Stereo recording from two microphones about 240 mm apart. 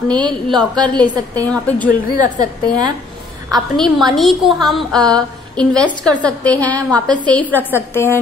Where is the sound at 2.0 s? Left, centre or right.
Left.